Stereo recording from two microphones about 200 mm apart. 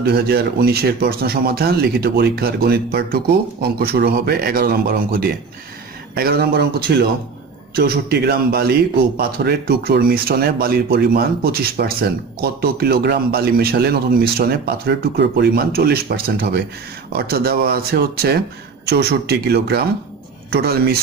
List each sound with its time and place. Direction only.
0.0 s a man's voice: 50° right (ahead or behind)